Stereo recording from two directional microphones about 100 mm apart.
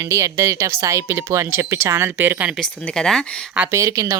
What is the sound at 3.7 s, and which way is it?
Speech, 35° right (ahead or behind).